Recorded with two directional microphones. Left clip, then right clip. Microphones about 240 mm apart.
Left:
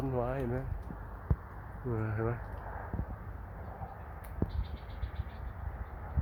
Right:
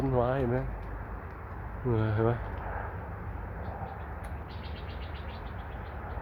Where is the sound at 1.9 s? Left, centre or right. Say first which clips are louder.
Right 7 dB; centre.